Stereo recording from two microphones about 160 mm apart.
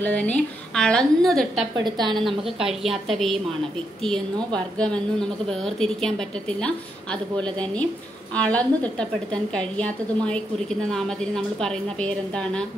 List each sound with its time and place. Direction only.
0.0 s a woman's voice: 10° left (ahead or behind)
1.8 s a woman's voice: 30° right (ahead or behind)
2.6 s a woman's voice: centre (ahead or behind)
4.7 s a woman's voice: 5° left (ahead or behind)